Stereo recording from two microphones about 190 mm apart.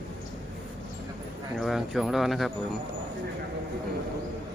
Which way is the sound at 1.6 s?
Centre (ahead or behind).